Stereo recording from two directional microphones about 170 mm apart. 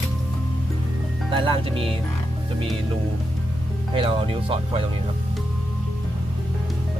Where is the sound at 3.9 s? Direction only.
35° right (ahead or behind).